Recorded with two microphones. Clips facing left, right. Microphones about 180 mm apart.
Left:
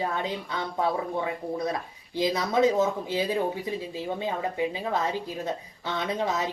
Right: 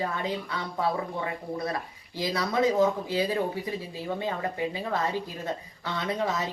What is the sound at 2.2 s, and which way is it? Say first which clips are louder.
Speech: left 3 dB; 20° left (ahead or behind).